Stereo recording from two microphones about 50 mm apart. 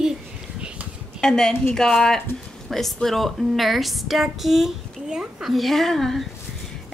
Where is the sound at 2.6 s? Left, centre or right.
Centre.